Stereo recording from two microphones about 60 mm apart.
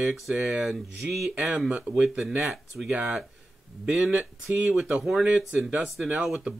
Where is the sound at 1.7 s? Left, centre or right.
Centre.